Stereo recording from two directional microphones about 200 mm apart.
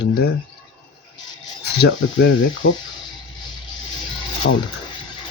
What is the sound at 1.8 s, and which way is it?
Speech, 70° left (ahead or behind).